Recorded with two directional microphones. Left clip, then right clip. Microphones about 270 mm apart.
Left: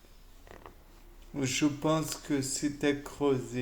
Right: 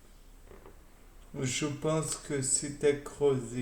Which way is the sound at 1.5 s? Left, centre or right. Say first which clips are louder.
Left 3 dB; left.